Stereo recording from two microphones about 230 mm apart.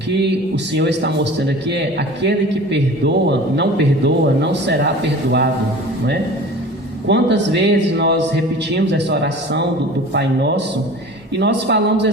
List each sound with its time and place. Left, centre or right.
0.2 s a man's voice: right
7.1 s a man's voice: right